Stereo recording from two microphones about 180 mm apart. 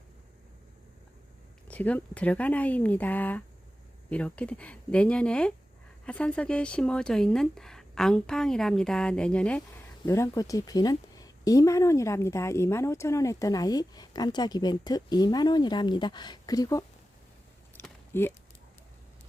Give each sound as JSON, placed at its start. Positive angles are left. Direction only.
{"t": 1.6, "sound": "speech", "side_deg": 10}
{"t": 17.8, "sound": "a sound", "side_deg": 15}
{"t": 18.1, "sound": "speech", "side_deg": 10}